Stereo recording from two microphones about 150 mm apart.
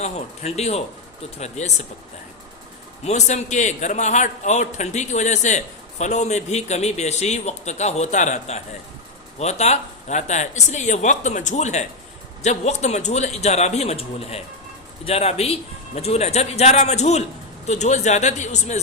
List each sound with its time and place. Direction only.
0.0 s a man's voice: 45° left (ahead or behind)
3.0 s a man's voice: 50° left (ahead or behind)